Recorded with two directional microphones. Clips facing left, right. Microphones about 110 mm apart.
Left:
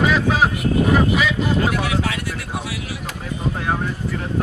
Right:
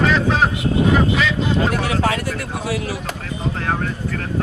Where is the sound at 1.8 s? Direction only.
45° right (ahead or behind).